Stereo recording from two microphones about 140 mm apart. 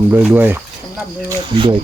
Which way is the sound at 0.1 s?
10° right (ahead or behind).